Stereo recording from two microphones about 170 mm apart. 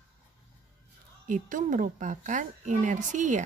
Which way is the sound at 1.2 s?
50° right (ahead or behind).